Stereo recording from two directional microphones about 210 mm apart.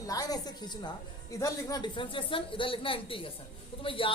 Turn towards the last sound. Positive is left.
turn(degrees=25)  # may be behind; listen again after turning